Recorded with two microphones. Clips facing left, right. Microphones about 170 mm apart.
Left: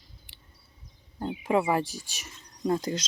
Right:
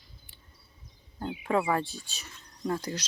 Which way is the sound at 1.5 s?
15° left (ahead or behind).